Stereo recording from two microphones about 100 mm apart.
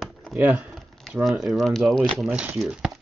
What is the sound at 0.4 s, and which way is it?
Speech, 15° right (ahead or behind).